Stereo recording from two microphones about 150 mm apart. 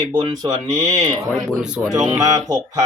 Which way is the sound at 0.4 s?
25° right (ahead or behind).